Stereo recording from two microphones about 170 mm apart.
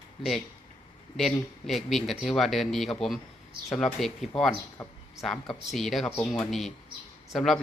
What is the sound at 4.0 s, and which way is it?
Speech, centre (ahead or behind).